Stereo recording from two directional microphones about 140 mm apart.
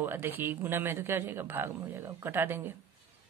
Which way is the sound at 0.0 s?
15° right (ahead or behind).